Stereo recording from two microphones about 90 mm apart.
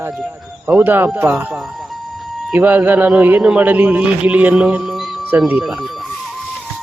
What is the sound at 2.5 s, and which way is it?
Speech, 20° right (ahead or behind).